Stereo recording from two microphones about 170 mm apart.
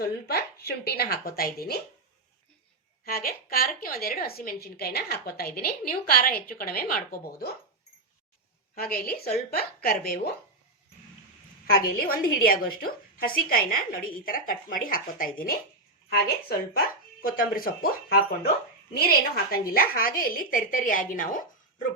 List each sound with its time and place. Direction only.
0.0 s a woman's voice: 65° left (ahead or behind)
3.0 s a woman's voice: 60° left (ahead or behind)
8.7 s a woman's voice: 60° left (ahead or behind)
11.9 s a woman's voice: 60° left (ahead or behind)